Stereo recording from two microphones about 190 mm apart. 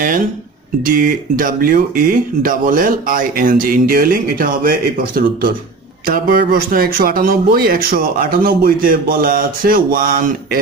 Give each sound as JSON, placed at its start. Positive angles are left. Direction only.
{"t": 0.8, "sound": "speech", "side_deg": -45}